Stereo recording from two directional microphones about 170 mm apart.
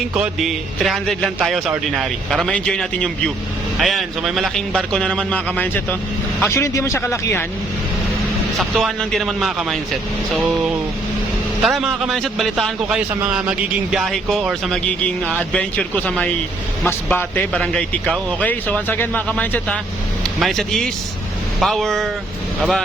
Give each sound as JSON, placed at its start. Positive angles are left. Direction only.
{"t": 0.1, "sound": "a man's voice", "side_deg": -5}
{"t": 8.5, "sound": "a man's voice", "side_deg": 0}